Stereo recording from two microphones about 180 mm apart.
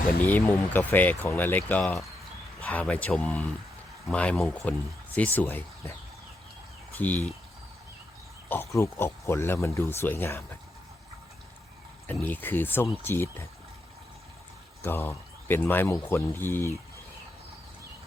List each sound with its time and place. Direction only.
0.2 s speech: 10° left (ahead or behind)
6.9 s speech: 10° left (ahead or behind)
8.4 s speech: 15° left (ahead or behind)
12.0 s speech: 10° left (ahead or behind)
14.8 s speech: 10° left (ahead or behind)